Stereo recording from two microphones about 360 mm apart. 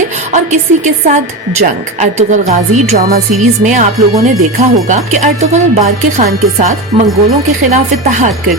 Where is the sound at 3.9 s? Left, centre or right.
Centre.